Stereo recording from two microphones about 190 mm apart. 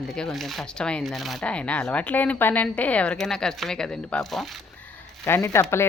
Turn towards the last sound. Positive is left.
turn(degrees=15)  # may be behind; listen again after turning